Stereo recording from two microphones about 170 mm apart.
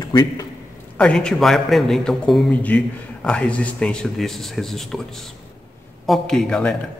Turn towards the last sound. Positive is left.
turn(degrees=5)  # may be behind; listen again after turning